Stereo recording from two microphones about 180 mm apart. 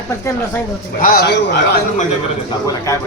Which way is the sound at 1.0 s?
60° left (ahead or behind).